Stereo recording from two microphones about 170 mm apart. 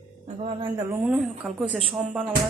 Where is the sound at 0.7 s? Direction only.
10° right (ahead or behind).